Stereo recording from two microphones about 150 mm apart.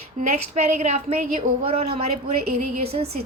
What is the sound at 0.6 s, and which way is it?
A woman's voice, 45° right (ahead or behind).